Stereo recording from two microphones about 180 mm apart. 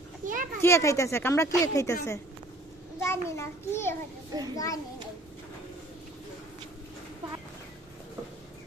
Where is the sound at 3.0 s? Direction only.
15° left (ahead or behind).